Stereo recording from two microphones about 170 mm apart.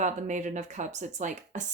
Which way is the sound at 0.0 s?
45° right (ahead or behind).